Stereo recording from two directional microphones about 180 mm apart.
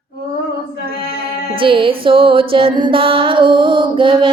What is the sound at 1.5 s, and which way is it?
Music, 30° right (ahead or behind).